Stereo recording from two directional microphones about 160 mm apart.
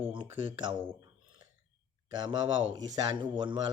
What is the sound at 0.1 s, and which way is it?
Speech, 30° right (ahead or behind).